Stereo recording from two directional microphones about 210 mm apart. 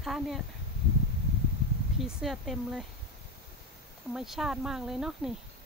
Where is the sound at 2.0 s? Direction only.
Centre (ahead or behind).